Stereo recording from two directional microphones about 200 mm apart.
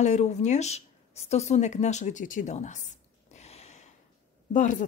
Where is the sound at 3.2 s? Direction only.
35° left (ahead or behind).